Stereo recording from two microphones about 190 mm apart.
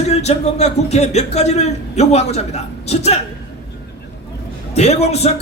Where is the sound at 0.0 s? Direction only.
35° left (ahead or behind).